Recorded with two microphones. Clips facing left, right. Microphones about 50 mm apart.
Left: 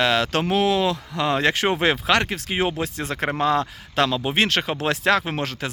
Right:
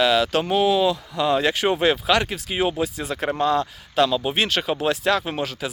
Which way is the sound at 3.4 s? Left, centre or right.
Left.